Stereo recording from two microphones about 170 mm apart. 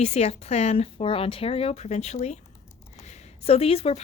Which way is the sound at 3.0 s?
40° left (ahead or behind).